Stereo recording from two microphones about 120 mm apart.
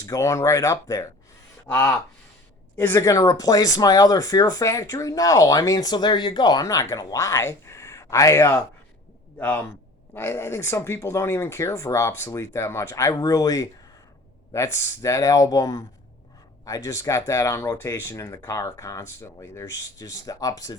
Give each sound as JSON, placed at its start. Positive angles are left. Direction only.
{"t": 0.0, "sound": "speech", "side_deg": 25}